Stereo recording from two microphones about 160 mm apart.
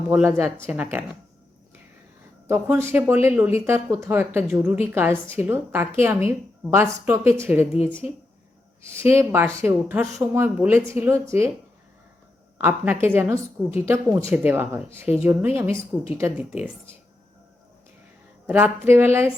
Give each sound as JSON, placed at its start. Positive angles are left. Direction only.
{"t": 0.1, "sound": "a woman's voice", "side_deg": -15}
{"t": 2.5, "sound": "a woman's voice", "side_deg": -15}
{"t": 12.5, "sound": "a woman's voice", "side_deg": -10}
{"t": 18.4, "sound": "a woman's voice", "side_deg": -10}